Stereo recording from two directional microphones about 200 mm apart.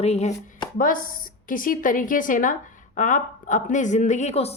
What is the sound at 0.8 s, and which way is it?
A woman's voice, 45° left (ahead or behind).